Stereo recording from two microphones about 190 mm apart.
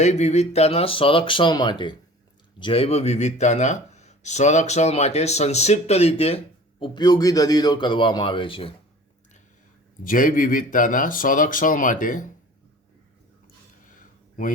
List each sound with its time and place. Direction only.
0.0 s speech: 35° left (ahead or behind)
10.0 s speech: 45° left (ahead or behind)
13.9 s a sound: 45° left (ahead or behind)